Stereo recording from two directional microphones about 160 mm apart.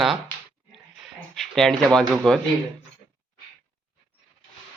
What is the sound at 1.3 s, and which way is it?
Speech, centre (ahead or behind).